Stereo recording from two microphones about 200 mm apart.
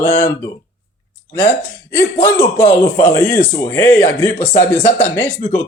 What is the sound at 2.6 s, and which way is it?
A man's voice, 10° left (ahead or behind).